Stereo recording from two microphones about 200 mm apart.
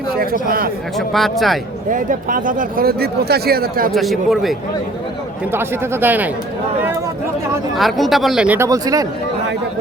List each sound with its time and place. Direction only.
0.4 s speech: 45° right (ahead or behind)
0.9 s speech: centre (ahead or behind)
1.9 s speech: 40° right (ahead or behind)
3.9 s speech: centre (ahead or behind)
5.5 s speech: 10° right (ahead or behind)
7.8 s speech: centre (ahead or behind); by 9.0 s 15° right (ahead or behind)